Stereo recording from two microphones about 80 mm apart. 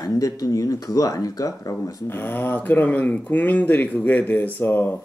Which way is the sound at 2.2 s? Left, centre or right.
Left.